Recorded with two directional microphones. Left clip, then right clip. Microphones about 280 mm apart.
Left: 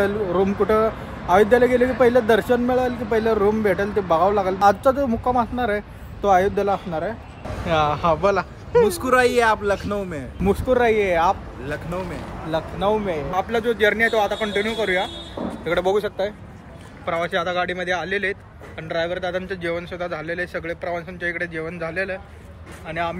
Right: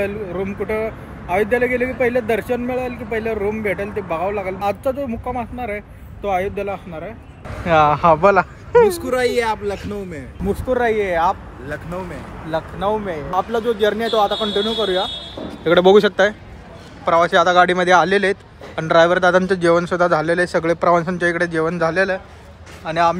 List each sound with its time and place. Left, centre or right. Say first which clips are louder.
0.0 s a man's voice: left 3 dB; centre
7.5 s speech: right 6 dB; centre
13.3 s speech: right 4 dB; centre
15.6 s a man's voice: right 9 dB; right
17.0 s a man's voice: right 9 dB; centre
18.8 s a man's voice: right 11 dB; right
19.4 s a man's voice: right 11 dB; centre